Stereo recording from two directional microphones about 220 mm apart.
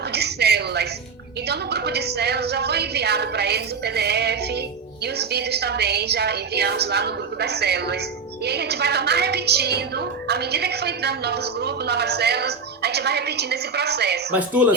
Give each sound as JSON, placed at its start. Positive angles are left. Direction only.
{"t": 0.1, "sound": "a sound", "side_deg": -50}
{"t": 1.5, "sound": "a woman's voice", "side_deg": -50}
{"t": 14.3, "sound": "speech", "side_deg": -5}